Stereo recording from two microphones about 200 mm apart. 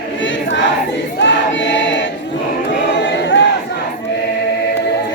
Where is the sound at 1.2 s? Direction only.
65° left (ahead or behind).